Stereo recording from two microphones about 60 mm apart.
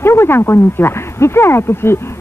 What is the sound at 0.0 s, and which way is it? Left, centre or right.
Speech, left.